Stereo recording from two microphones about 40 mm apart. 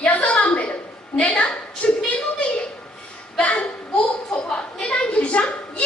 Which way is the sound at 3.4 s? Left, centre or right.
Left.